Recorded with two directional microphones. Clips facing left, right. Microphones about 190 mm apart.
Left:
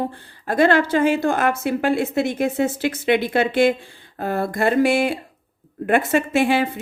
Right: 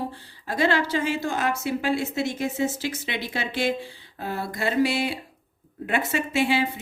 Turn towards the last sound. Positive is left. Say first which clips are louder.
# left 5 dB
turn(degrees=50)  # may be behind; listen again after turning